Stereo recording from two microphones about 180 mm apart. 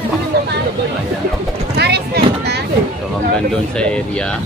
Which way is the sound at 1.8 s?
65° right (ahead or behind).